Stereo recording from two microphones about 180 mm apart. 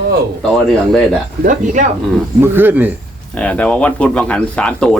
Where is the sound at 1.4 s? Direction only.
45° right (ahead or behind).